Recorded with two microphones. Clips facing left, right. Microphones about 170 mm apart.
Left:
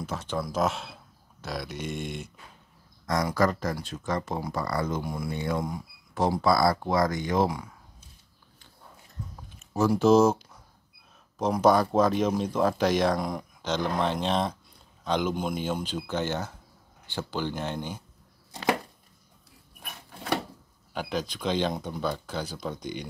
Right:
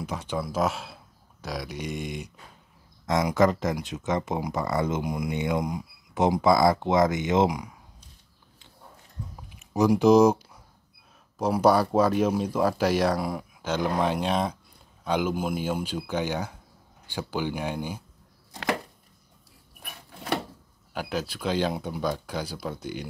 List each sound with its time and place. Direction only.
0.0 s speech: 10° right (ahead or behind)
3.1 s speech: 20° right (ahead or behind)
9.8 s speech: 15° right (ahead or behind)
20.9 s speech: 5° right (ahead or behind)